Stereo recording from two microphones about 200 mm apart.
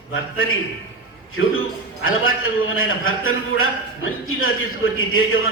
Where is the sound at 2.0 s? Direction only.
90° left.